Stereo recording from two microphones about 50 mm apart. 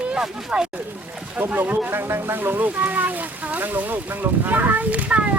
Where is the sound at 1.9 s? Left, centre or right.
Right.